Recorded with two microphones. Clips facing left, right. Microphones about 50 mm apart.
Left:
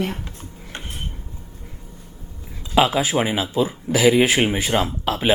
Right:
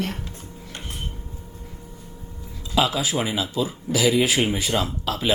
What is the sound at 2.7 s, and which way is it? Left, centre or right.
Speech, left.